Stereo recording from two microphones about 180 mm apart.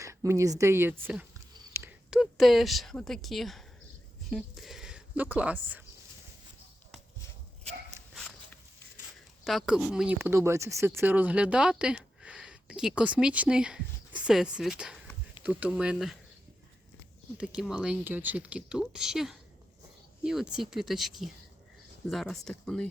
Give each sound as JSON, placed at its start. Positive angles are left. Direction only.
{"t": 0.0, "sound": "a woman's voice", "side_deg": -15}
{"t": 1.5, "sound": "a sound", "side_deg": -15}
{"t": 4.3, "sound": "speech", "side_deg": 0}
{"t": 8.1, "sound": "a sound", "side_deg": 0}
{"t": 9.4, "sound": "speech", "side_deg": 0}
{"t": 10.2, "sound": "speech", "side_deg": -15}
{"t": 17.3, "sound": "speech", "side_deg": -5}